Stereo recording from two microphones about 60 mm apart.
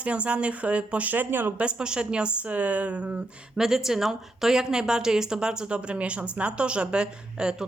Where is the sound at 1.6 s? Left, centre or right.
Centre.